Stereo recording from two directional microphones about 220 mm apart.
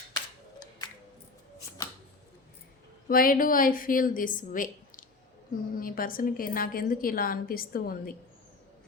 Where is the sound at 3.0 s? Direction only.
40° left (ahead or behind).